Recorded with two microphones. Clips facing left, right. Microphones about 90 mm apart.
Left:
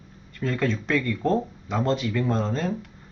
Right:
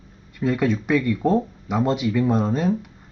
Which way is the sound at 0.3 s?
10° right (ahead or behind).